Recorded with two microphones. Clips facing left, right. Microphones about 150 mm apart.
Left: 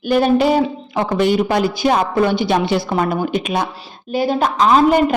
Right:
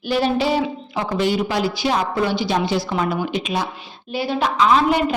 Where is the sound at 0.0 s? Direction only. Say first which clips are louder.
Left 5 dB; 50° left (ahead or behind).